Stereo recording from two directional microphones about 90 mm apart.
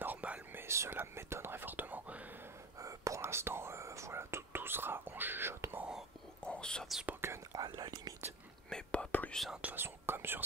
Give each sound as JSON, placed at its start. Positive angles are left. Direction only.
{"t": 0.0, "sound": "whispering", "side_deg": -15}
{"t": 0.7, "sound": "speech", "side_deg": -30}
{"t": 2.8, "sound": "speech", "side_deg": -35}
{"t": 6.4, "sound": "whispering", "side_deg": 10}
{"t": 7.1, "sound": "speech", "side_deg": -25}
{"t": 7.5, "sound": "whispering", "side_deg": -45}
{"t": 8.6, "sound": "whispering", "side_deg": 10}
{"t": 9.5, "sound": "speech", "side_deg": -15}